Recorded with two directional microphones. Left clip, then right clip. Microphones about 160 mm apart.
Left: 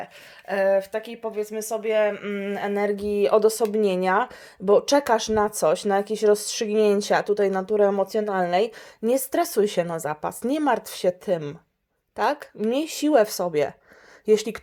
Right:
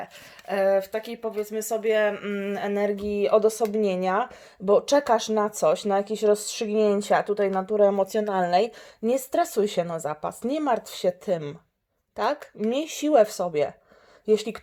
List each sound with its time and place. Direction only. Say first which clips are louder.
0.0 s speech: left 1 dB; 5° left (ahead or behind); by 14.6 s 25° left (ahead or behind)